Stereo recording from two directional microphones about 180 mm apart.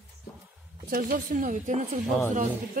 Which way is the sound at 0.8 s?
50° right (ahead or behind).